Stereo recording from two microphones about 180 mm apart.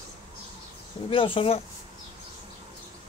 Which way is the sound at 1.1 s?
30° left (ahead or behind).